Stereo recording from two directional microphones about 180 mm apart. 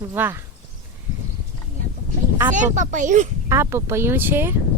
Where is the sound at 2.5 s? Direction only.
45° right (ahead or behind).